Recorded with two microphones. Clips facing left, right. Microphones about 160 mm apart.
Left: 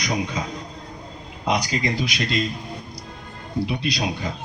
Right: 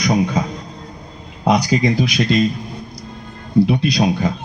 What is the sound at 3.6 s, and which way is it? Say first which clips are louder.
Speech: right 9 dB; 50° right (ahead or behind).